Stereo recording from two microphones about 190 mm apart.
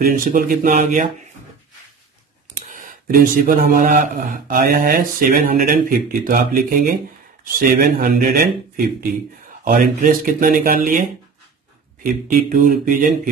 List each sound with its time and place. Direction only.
0.0 s speech: 45° right (ahead or behind)
2.7 s speech: 50° right (ahead or behind)